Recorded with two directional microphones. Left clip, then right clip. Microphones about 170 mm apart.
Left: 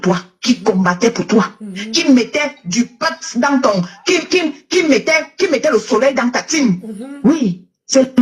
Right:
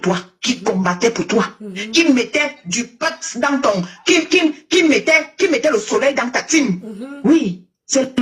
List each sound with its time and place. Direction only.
0.0 s beatboxing: 35° left (ahead or behind)
7.9 s beatboxing: 35° left (ahead or behind)